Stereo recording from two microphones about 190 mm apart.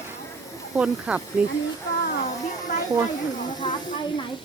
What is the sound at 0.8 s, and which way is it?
Speech, 5° right (ahead or behind).